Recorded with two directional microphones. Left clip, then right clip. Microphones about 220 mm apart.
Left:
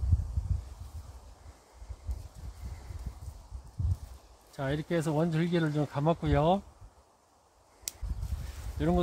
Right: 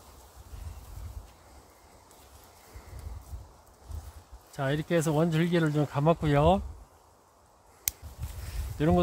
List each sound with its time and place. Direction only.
4.6 s speech: 25° right (ahead or behind)
7.9 s a sound: 10° right (ahead or behind)
8.7 s speech: 40° right (ahead or behind)